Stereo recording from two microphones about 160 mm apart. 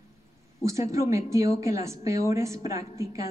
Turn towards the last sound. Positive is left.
turn(degrees=-20)  # may be behind; listen again after turning